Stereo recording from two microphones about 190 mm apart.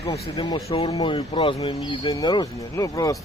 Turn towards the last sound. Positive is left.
turn(degrees=15)  # may be behind; listen again after turning